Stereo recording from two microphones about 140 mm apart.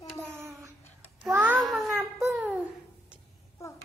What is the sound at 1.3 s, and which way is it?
Child singing, 10° right (ahead or behind).